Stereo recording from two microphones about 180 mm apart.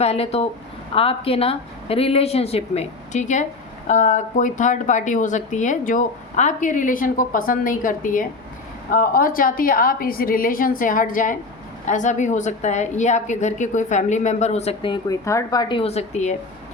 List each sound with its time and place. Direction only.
0.0 s a woman's voice: 35° left (ahead or behind)
15.1 s a woman's voice: 15° left (ahead or behind)
15.8 s a woman's voice: 35° left (ahead or behind)